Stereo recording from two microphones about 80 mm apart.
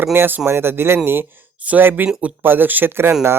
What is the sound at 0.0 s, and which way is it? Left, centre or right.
Speech, right.